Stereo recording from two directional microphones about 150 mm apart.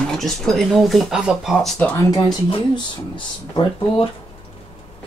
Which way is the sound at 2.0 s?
25° left (ahead or behind).